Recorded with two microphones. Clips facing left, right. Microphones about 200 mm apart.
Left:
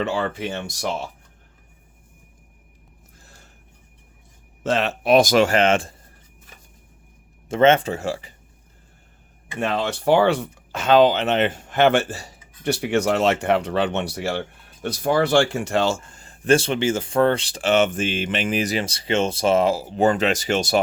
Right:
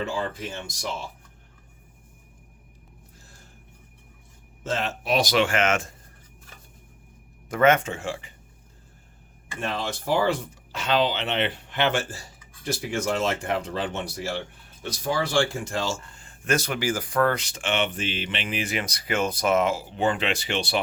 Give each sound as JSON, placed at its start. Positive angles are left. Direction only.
{"t": 0.0, "sound": "speech", "side_deg": 75}
{"t": 4.6, "sound": "speech", "side_deg": 75}
{"t": 7.4, "sound": "speech", "side_deg": 25}
{"t": 9.6, "sound": "speech", "side_deg": 70}
{"t": 16.2, "sound": "speech", "side_deg": 35}